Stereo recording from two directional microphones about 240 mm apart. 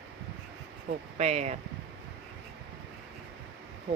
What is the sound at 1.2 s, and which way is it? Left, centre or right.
Speech, right.